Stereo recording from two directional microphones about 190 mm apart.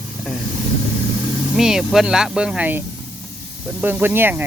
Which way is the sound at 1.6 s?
5° right (ahead or behind).